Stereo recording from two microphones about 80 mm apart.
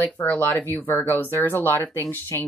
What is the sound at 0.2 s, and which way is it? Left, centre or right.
Speech, left.